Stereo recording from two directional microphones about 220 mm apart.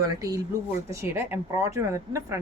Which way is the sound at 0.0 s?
15° right (ahead or behind).